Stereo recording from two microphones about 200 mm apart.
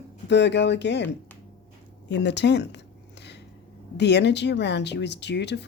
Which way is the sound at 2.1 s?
60° left (ahead or behind).